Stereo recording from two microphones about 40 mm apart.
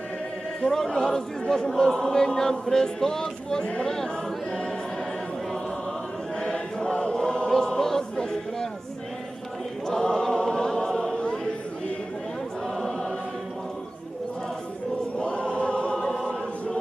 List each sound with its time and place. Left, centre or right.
0.7 s chant: centre
6.4 s chant: centre
7.1 s choir: centre
9.8 s choir: centre
12.6 s choir: centre
15.2 s chant: left
16.0 s chant: centre